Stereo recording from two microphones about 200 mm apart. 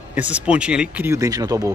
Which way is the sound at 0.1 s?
5° right (ahead or behind).